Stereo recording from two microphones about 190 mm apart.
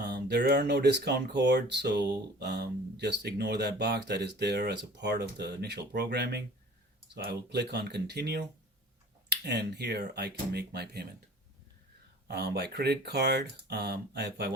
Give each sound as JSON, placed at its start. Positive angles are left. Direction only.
{"t": 0.0, "sound": "speech", "side_deg": -60}
{"t": 12.3, "sound": "speech", "side_deg": -55}